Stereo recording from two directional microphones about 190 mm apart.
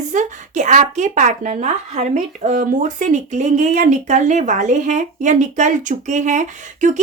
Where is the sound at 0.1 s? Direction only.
40° right (ahead or behind).